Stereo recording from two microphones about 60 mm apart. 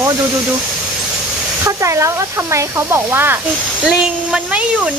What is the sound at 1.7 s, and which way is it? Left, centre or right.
Speech, right.